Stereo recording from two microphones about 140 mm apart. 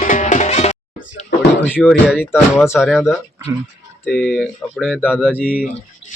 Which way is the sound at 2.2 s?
15° left (ahead or behind).